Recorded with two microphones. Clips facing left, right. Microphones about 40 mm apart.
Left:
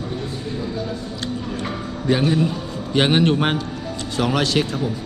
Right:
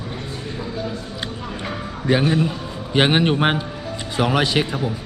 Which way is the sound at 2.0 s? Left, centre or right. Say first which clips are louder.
Even; centre.